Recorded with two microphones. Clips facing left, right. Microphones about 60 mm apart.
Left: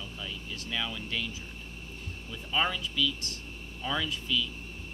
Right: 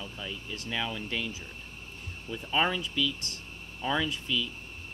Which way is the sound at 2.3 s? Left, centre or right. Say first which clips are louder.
Right 2 dB; centre.